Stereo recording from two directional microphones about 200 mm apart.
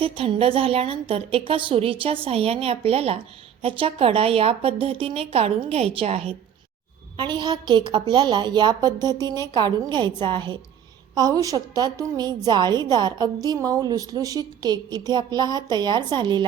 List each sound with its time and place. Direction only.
0.0 s a woman's voice: 25° right (ahead or behind)